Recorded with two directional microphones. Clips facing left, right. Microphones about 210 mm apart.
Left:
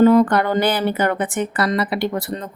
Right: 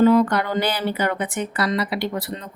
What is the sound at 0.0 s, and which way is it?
A woman's voice, 50° left (ahead or behind).